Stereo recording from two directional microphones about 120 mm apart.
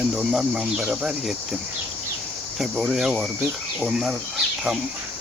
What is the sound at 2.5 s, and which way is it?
Speech, 5° right (ahead or behind).